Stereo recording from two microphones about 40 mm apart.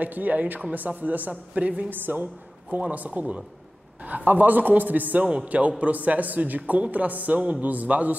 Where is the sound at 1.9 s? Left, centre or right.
Right.